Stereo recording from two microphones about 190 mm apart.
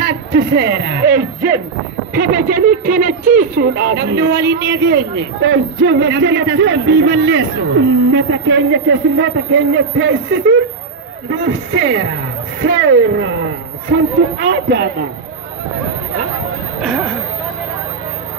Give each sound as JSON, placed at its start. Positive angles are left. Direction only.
{"t": 0.3, "sound": "a man's voice", "side_deg": -60}
{"t": 16.8, "sound": "speech", "side_deg": 0}